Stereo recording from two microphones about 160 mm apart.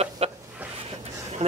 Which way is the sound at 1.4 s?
45° right (ahead or behind).